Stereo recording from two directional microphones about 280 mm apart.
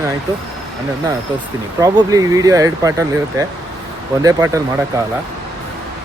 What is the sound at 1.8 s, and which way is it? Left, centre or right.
Speech, centre.